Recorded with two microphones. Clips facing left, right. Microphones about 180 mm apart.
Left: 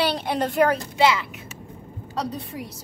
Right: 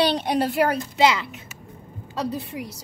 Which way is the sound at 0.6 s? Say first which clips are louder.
Left 3 dB; 10° right (ahead or behind).